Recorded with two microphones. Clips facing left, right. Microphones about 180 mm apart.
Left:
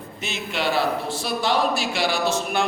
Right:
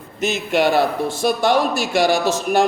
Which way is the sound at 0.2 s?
45° right (ahead or behind).